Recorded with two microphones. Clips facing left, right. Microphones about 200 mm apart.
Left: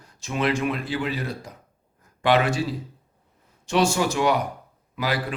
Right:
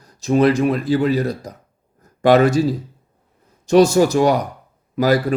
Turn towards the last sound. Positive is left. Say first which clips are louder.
# right 10 dB
turn(degrees=-45)  # may be behind; listen again after turning